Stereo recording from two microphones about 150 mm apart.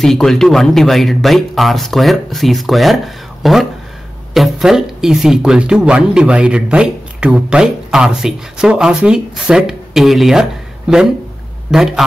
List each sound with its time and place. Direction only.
0.0 s speech: centre (ahead or behind)